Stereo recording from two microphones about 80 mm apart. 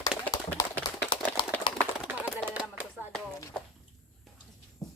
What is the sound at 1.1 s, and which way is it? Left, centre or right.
Typewriter, left.